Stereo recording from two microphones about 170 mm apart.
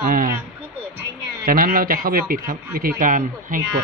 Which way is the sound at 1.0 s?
60° right (ahead or behind).